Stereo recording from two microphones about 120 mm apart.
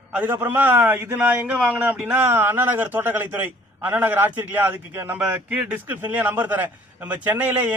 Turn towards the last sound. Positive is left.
turn(degrees=-15)  # may be behind; listen again after turning